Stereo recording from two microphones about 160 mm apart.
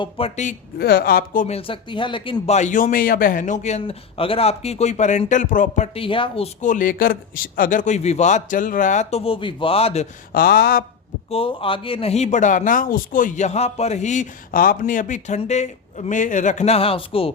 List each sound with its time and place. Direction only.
0.2 s speech: 35° left (ahead or behind)
0.8 s speech: 80° left; by 1.5 s 55° left (ahead or behind)
1.5 s speech: 35° left (ahead or behind)
2.6 s a man's voice: 50° left (ahead or behind)
10.3 s speech: 70° left (ahead or behind)
11.3 s a man's voice: 35° left (ahead or behind)